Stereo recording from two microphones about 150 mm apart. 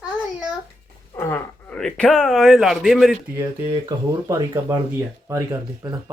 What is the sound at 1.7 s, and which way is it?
Speech, 5° left (ahead or behind).